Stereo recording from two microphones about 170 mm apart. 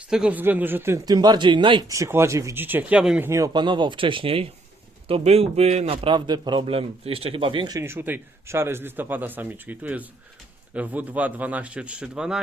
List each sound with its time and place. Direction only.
0.1 s a man's voice: 5° right (ahead or behind)
3.2 s a man's voice: 20° right (ahead or behind)